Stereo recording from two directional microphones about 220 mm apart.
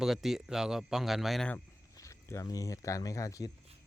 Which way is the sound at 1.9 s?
15° left (ahead or behind).